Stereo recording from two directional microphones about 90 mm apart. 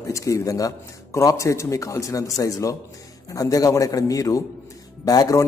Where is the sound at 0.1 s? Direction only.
35° left (ahead or behind).